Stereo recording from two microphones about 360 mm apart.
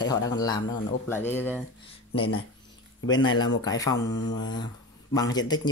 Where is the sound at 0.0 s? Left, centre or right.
Centre.